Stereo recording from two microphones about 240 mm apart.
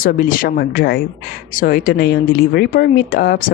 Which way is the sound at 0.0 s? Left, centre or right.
Left.